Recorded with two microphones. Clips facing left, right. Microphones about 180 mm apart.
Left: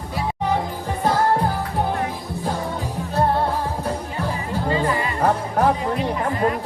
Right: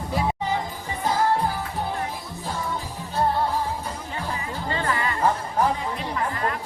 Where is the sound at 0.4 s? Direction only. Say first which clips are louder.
Left 5 dB; 65° left (ahead or behind).